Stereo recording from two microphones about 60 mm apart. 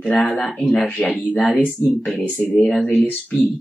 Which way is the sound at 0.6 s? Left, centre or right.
Centre.